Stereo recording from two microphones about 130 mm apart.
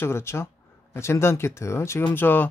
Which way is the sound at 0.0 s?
20° left (ahead or behind).